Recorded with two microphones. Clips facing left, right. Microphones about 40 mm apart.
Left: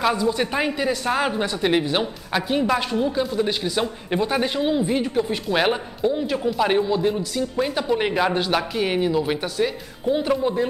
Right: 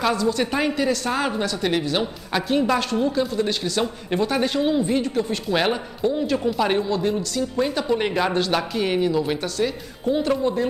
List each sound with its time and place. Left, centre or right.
0.1 s speech: centre
2.3 s speech: centre